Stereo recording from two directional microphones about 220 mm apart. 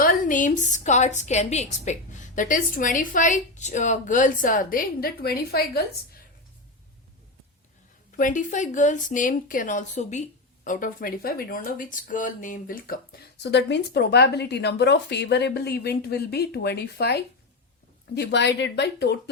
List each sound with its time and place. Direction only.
0.0 s a woman's voice: 40° left (ahead or behind)
8.1 s speech: 35° left (ahead or behind)